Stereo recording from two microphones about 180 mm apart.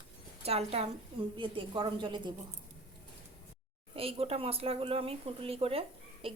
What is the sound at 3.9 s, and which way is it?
A woman's voice, 30° right (ahead or behind).